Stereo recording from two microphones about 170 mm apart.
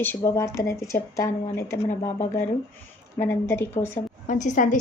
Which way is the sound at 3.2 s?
15° left (ahead or behind).